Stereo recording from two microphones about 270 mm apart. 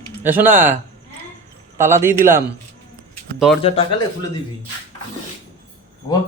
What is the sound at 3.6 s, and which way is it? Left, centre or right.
Speech, left.